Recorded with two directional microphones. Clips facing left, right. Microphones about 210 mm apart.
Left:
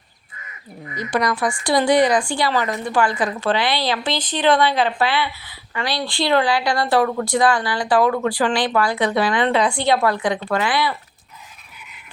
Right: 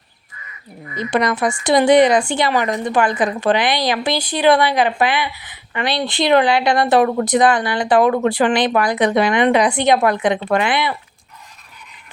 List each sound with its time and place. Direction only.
0.9 s a woman's voice: 25° right (ahead or behind)